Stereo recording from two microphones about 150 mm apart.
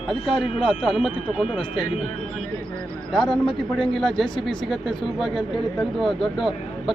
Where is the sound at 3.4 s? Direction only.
30° left (ahead or behind).